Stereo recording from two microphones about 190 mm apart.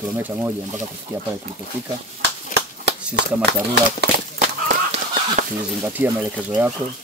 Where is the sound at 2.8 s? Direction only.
65° right (ahead or behind).